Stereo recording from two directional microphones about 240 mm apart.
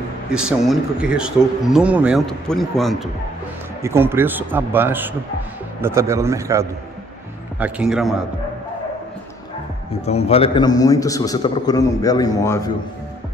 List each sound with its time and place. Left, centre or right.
0.3 s speech: centre
3.8 s speech: centre
10.0 s a man's voice: left